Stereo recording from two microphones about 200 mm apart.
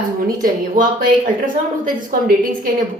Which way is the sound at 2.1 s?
45° right (ahead or behind).